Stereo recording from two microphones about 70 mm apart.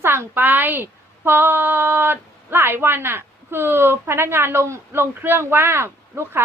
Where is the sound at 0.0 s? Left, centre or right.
Right.